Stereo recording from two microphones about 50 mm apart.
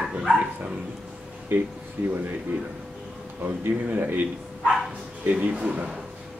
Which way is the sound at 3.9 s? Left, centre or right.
Right.